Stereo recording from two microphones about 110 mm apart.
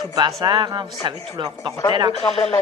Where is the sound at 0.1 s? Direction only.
40° right (ahead or behind).